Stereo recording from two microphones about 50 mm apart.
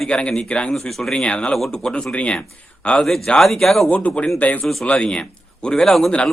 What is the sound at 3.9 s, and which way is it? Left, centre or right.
A man's voice, left.